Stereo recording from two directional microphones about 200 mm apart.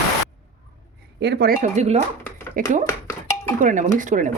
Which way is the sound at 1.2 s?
55° right (ahead or behind).